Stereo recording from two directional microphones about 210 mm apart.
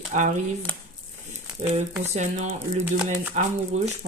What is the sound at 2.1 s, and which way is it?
Speech, 35° right (ahead or behind).